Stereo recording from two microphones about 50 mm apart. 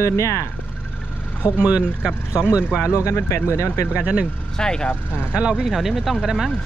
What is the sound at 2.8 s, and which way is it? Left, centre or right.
Speech, left.